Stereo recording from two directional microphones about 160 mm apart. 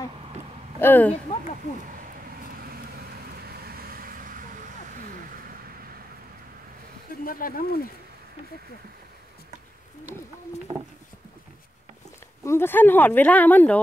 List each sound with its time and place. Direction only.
0.7 s speech: 10° left (ahead or behind)
2.5 s vehicle: 70° right (ahead or behind)
7.2 s speech: 60° left (ahead or behind)
12.4 s speech: 15° left (ahead or behind)